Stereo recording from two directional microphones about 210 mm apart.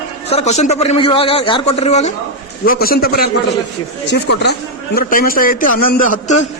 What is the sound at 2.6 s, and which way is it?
A man's voice, 45° left (ahead or behind).